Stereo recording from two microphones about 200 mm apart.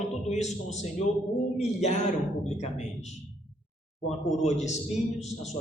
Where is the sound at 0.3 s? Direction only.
35° left (ahead or behind).